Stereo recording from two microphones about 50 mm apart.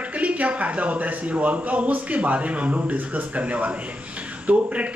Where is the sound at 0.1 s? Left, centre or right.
Right.